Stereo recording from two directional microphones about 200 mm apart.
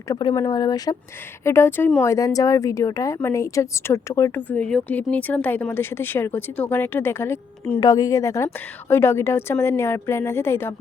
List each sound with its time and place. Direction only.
0.1 s speech: 20° left (ahead or behind)